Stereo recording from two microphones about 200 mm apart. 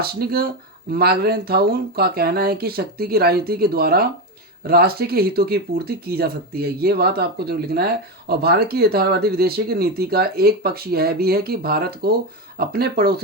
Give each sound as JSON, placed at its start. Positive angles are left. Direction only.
{"t": 0.0, "sound": "speech", "side_deg": -50}